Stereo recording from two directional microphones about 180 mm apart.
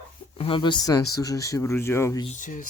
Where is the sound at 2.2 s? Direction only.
45° left (ahead or behind).